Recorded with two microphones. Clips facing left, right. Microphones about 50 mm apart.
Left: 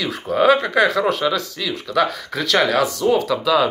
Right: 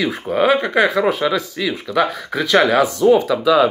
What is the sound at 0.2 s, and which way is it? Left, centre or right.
Speech, centre.